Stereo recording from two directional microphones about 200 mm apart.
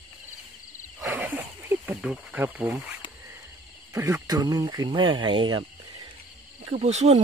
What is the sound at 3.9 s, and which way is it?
Speech, 15° right (ahead or behind).